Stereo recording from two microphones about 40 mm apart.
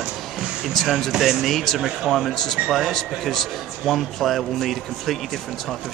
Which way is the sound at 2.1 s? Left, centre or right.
Centre.